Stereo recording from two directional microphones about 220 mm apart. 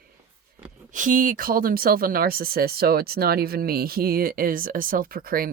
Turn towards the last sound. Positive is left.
turn(degrees=-40)  # may be behind; listen again after turning